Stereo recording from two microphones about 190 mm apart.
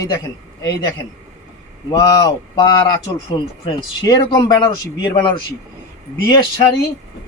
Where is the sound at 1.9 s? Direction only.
20° left (ahead or behind).